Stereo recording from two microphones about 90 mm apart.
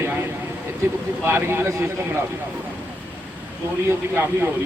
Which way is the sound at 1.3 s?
25° right (ahead or behind).